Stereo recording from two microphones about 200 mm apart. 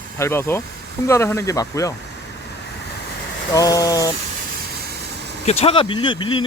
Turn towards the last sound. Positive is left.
turn(degrees=25)  # may be behind; listen again after turning